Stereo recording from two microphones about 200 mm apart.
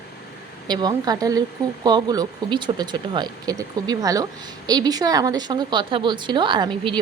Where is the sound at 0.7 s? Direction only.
20° right (ahead or behind).